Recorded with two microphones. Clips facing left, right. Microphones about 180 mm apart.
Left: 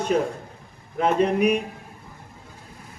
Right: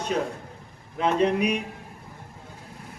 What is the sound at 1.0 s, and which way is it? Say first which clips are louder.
Speech: left 2 dB; 50° left (ahead or behind).